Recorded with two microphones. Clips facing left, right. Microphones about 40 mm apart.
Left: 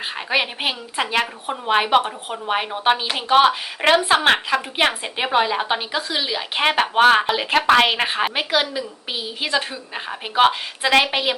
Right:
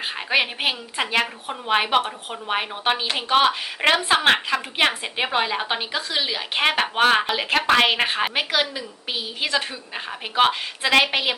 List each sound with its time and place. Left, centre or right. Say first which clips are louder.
0.0 s a woman's voice: even; centre